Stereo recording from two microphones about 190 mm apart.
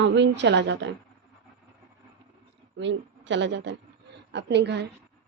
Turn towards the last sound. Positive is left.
turn(degrees=-65)  # may be behind; listen again after turning